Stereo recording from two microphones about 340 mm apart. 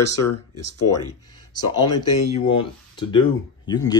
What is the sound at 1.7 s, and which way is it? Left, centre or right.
Speech, centre.